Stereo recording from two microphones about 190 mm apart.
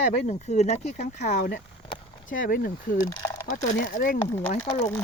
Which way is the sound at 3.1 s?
20° left (ahead or behind).